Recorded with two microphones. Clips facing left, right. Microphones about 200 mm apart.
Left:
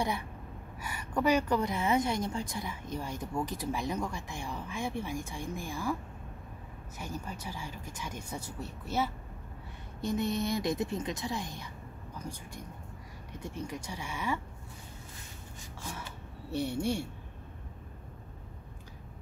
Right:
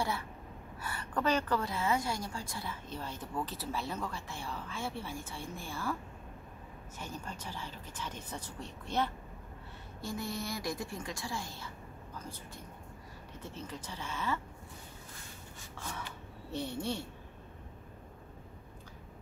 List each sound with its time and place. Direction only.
0.7 s a woman's voice: 10° left (ahead or behind)
7.0 s a woman's voice: 10° left (ahead or behind)
10.0 s a woman's voice: 20° left (ahead or behind)
15.8 s a sound: 10° left (ahead or behind)
16.5 s a woman's voice: 10° left (ahead or behind)